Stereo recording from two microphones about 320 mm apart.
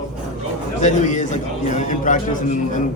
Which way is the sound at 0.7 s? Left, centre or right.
Left.